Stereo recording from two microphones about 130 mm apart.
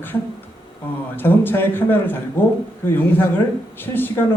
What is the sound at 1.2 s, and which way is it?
A man's voice, 15° left (ahead or behind).